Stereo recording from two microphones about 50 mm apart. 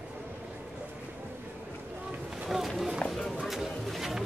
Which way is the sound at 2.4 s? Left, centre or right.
Centre.